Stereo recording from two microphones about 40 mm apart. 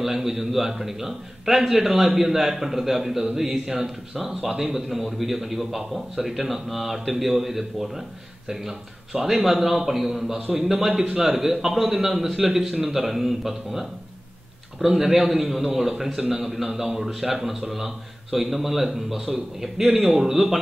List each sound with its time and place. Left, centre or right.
0.0 s a man's voice: centre
19.8 s a man's voice: right
20.2 s a man's voice: centre